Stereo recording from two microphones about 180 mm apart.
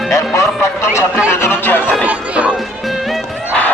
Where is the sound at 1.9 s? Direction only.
5° right (ahead or behind).